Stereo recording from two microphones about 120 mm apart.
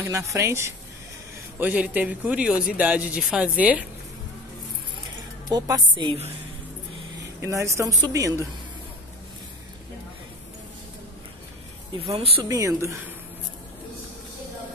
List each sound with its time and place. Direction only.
0.0 s speech: 25° right (ahead or behind)
1.6 s speech: 10° right (ahead or behind)
5.5 s a woman's voice: 35° right (ahead or behind)
7.4 s speech: 25° right (ahead or behind)
12.1 s speech: 55° right (ahead or behind)
12.4 s speech: 25° right (ahead or behind)